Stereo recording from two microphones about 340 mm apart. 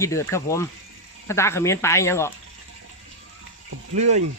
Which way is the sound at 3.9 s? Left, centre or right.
Centre.